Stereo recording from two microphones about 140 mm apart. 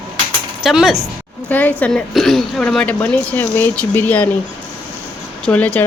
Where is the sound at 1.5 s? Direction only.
10° left (ahead or behind).